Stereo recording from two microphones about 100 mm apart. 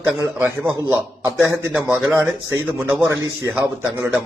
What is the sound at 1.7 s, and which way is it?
A man's voice, 20° right (ahead or behind).